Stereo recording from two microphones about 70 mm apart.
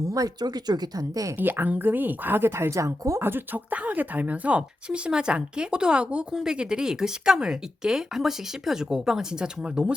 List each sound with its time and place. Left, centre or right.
0.0 s speech: right
0.3 s speech: right
1.4 s speech: right
3.2 s speech: right; by 9.9 s centre